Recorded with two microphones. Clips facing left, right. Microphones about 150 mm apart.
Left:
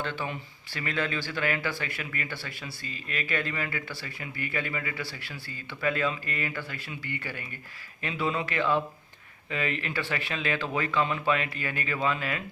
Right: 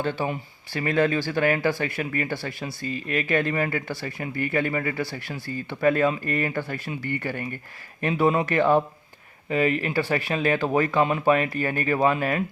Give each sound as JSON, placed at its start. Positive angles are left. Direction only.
{"t": 0.0, "sound": "speech", "side_deg": -40}